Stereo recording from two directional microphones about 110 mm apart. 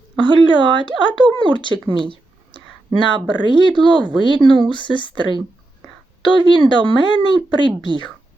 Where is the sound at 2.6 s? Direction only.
45° left (ahead or behind).